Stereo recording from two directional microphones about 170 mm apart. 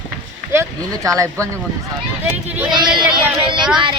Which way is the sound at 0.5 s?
20° right (ahead or behind).